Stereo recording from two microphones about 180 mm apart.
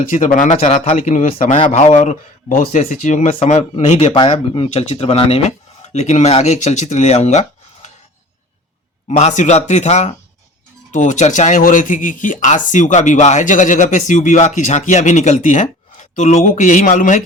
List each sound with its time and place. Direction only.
0.1 s speech: 45° left (ahead or behind)
9.0 s speech: 40° left (ahead or behind)